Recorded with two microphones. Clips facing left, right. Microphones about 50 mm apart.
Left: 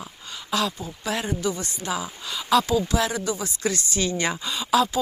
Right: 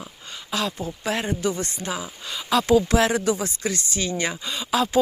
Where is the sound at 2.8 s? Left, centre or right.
Right.